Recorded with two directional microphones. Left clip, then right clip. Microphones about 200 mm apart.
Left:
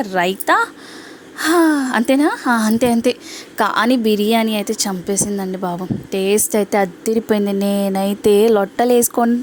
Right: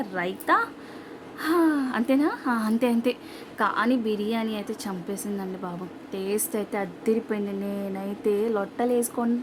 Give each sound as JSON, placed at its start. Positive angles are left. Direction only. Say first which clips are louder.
{"t": 0.0, "sound": "a woman's voice", "louder": "left 11 dB", "side_deg": 40}